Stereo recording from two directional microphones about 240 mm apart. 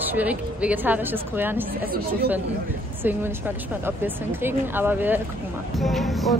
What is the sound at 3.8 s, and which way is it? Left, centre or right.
A woman's voice, centre.